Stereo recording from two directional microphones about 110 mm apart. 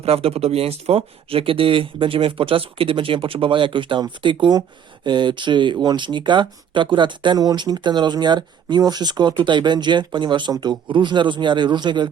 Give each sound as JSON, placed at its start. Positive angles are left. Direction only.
{"t": 0.0, "sound": "speech", "side_deg": -65}